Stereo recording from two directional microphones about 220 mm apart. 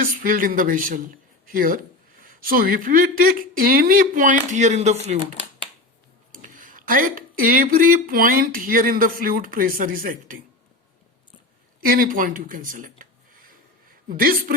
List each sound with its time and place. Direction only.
0.0 s speech: 40° right (ahead or behind)
6.3 s speech: 35° right (ahead or behind)
11.8 s speech: 40° right (ahead or behind)